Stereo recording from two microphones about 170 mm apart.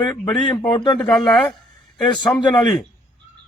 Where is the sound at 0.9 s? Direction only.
5° left (ahead or behind).